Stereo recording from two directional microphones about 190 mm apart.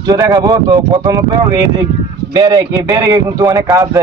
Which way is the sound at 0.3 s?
20° right (ahead or behind).